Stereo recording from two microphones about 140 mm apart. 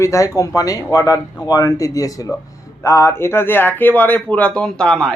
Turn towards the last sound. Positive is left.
turn(degrees=5)  # may be behind; listen again after turning